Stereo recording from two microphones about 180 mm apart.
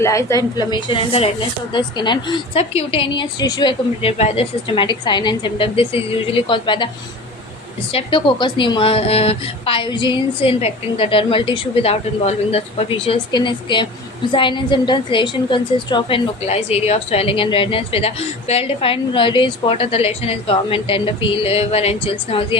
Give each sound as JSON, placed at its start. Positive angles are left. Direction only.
{"t": 0.0, "sound": "a woman's voice", "side_deg": 15}
{"t": 7.9, "sound": "a woman's voice", "side_deg": 25}